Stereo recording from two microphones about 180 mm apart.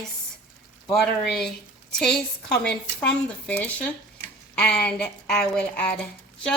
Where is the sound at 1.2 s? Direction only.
Centre (ahead or behind).